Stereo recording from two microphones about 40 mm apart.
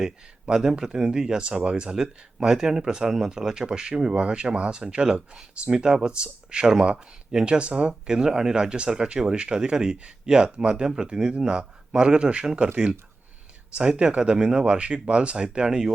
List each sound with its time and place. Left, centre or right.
0.0 s speech: centre